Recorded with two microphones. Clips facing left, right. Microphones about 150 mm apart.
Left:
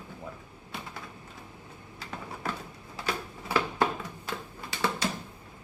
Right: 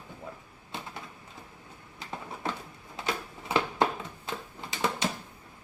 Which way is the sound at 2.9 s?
20° right (ahead or behind).